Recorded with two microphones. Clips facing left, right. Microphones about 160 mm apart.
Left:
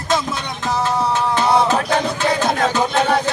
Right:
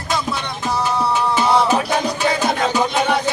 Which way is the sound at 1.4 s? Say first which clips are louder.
Left 1 dB; 20° left (ahead or behind).